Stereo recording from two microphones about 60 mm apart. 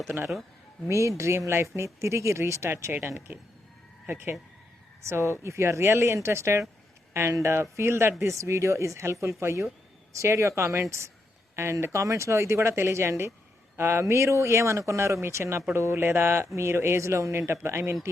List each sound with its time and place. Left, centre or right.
0.1 s speech: right
0.9 s speech: right
4.1 s a sound: right
5.0 s speech: right
8.2 s speech: right
16.0 s a sound: right
16.6 s speech: right